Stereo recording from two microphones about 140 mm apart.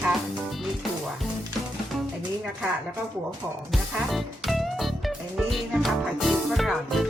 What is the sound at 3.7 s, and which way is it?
Music, centre (ahead or behind).